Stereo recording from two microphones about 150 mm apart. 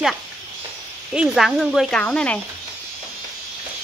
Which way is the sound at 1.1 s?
Centre (ahead or behind).